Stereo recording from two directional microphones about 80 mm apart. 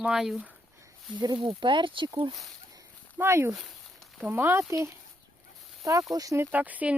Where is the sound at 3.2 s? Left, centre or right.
Right.